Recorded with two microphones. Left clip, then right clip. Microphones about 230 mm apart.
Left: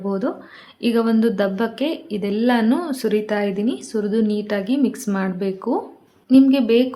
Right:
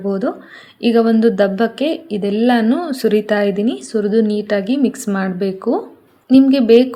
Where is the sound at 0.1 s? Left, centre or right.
Centre.